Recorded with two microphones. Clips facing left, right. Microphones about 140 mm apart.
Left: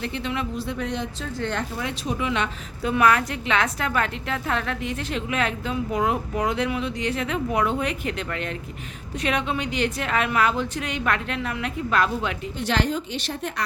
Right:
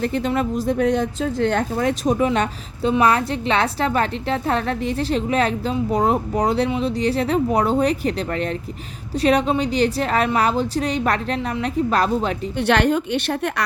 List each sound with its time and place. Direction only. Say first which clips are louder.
0.0 s speech: right 7 dB; 45° right (ahead or behind)
2.8 s a woman's voice: right 3 dB; 30° right (ahead or behind)
12.5 s a woman's voice: right 7 dB; 65° right (ahead or behind)